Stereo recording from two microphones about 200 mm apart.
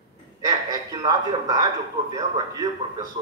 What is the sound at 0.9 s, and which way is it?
A man's voice, 20° right (ahead or behind).